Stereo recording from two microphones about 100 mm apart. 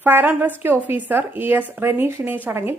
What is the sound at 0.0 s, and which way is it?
Speech, 20° right (ahead or behind).